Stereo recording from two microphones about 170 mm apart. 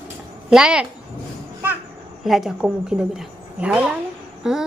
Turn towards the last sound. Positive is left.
turn(degrees=-5)  # may be behind; listen again after turning